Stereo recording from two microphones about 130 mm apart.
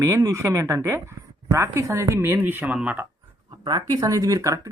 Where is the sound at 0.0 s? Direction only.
25° right (ahead or behind).